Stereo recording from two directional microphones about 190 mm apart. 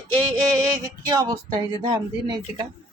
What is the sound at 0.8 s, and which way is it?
Speech, 20° right (ahead or behind).